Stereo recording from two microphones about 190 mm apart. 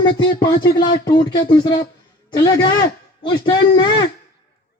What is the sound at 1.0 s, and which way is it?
A man's voice, 25° left (ahead or behind).